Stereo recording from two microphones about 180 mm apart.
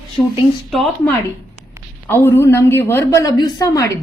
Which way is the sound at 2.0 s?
10° left (ahead or behind).